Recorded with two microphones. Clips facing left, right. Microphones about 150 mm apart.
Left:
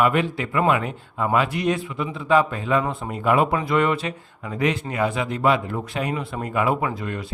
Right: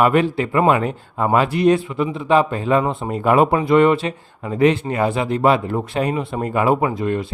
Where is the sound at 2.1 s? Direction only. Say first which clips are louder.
Right 2 dB; 20° right (ahead or behind).